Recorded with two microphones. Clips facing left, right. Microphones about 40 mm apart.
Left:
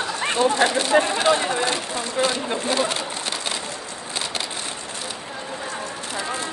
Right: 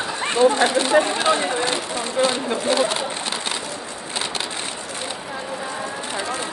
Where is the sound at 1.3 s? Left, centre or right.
Right.